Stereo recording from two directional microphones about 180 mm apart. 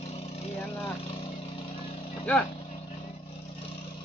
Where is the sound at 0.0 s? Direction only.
35° left (ahead or behind).